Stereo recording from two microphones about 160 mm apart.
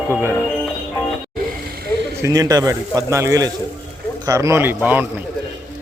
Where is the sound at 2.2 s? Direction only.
20° right (ahead or behind).